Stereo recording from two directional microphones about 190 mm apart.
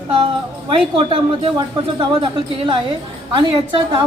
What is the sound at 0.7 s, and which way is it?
A woman's voice, 30° right (ahead or behind).